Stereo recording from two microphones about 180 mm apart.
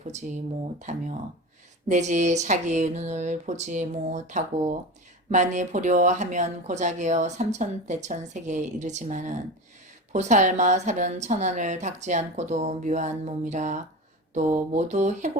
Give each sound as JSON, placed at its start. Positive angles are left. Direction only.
{"t": 0.0, "sound": "speech", "side_deg": -40}